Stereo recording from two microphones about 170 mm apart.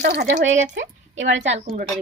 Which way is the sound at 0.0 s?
65° right (ahead or behind).